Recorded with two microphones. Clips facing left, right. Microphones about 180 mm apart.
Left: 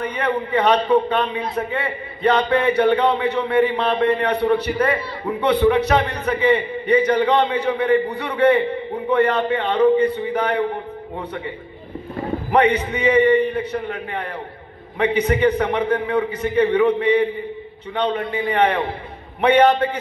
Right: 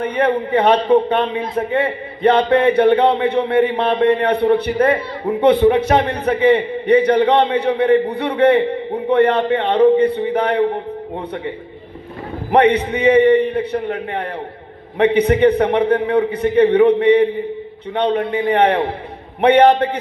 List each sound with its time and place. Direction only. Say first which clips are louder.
0.0 s a man's voice: right 5 dB; 55° right (ahead or behind)
2.2 s a man's voice: right 4 dB; 55° right (ahead or behind)
12.4 s a man's voice: right 4 dB; 60° right (ahead or behind)
15.0 s a man's voice: right 5 dB; 60° right (ahead or behind)